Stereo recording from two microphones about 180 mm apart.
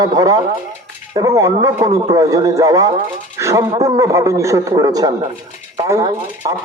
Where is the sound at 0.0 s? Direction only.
20° right (ahead or behind).